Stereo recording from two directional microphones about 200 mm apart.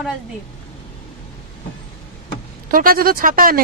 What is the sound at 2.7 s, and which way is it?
Speech, 45° right (ahead or behind).